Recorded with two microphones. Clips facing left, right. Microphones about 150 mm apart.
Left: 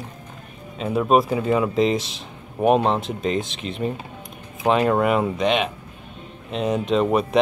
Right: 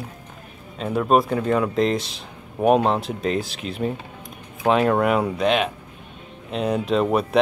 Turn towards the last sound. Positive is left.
turn(degrees=0)  # may be behind; listen again after turning